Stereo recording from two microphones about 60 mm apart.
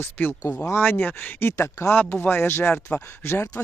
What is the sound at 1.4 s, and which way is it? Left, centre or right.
Speech, left.